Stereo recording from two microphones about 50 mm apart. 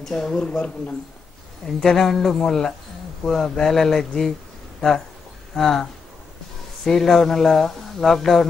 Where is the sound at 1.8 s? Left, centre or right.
Centre.